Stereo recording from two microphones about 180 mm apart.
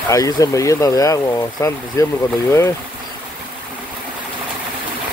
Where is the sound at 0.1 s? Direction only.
20° left (ahead or behind).